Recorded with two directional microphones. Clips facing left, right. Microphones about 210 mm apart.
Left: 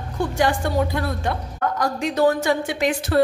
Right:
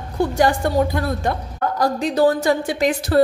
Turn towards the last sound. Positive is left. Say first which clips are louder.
# right 3 dB
turn(degrees=-35)  # may be behind; listen again after turning